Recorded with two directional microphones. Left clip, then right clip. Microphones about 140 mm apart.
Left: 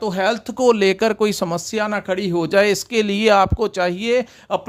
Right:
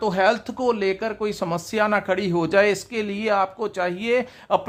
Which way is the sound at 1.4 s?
30° left (ahead or behind).